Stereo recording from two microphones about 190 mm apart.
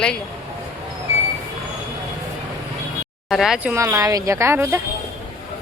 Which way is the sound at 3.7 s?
15° right (ahead or behind).